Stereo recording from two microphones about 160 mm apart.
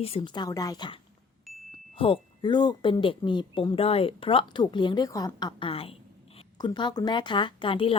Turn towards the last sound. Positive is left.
turn(degrees=30)  # may be behind; listen again after turning